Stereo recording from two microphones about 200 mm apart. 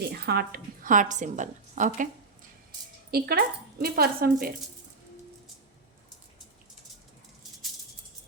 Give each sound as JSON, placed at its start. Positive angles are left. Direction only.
{"t": 0.0, "sound": "a woman's voice", "side_deg": -50}
{"t": 3.1, "sound": "speech", "side_deg": -50}